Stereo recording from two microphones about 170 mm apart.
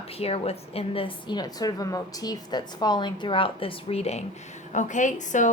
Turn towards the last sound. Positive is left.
turn(degrees=45)  # may be behind; listen again after turning